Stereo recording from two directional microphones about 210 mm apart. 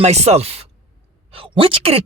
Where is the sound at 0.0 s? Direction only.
30° right (ahead or behind).